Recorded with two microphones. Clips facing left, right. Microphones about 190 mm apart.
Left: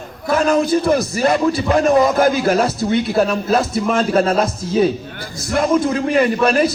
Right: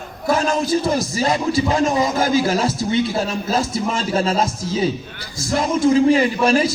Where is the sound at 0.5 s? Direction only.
60° left (ahead or behind).